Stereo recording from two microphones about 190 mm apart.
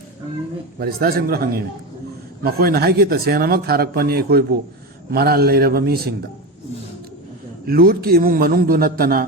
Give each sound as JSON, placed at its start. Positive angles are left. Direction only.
{"t": 0.8, "sound": "a man's voice", "side_deg": -50}
{"t": 7.7, "sound": "speech", "side_deg": -50}